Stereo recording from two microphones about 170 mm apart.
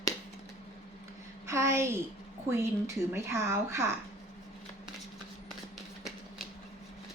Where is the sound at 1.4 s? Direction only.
15° right (ahead or behind).